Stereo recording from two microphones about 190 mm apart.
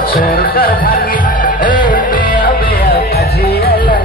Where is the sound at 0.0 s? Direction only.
50° left (ahead or behind).